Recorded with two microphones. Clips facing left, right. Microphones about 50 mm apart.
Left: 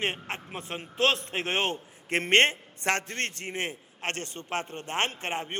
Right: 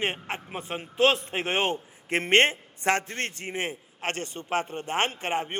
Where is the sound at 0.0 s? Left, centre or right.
Centre.